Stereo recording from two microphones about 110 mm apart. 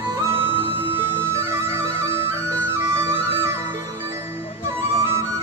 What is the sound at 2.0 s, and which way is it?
Music, 25° right (ahead or behind).